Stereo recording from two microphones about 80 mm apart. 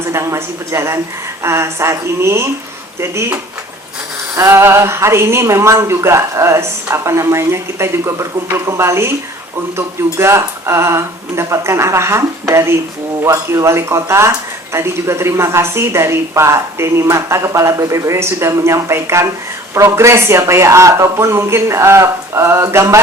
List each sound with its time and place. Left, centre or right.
0.1 s speech: right
4.4 s speech: right